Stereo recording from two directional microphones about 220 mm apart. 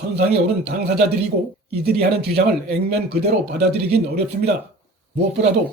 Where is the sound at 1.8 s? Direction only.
45° right (ahead or behind).